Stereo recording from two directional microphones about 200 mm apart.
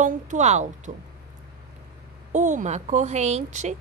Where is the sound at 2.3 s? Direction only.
35° right (ahead or behind).